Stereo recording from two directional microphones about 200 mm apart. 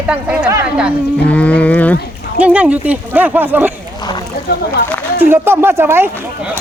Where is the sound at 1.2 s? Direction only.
5° left (ahead or behind).